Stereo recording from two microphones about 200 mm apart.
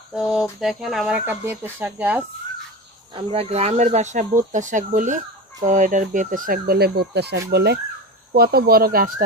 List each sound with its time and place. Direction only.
0.1 s speech: 5° right (ahead or behind)
3.2 s speech: 30° right (ahead or behind); by 9.1 s 50° right (ahead or behind)